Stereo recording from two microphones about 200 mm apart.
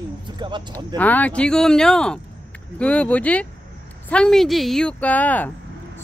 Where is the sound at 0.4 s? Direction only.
20° right (ahead or behind).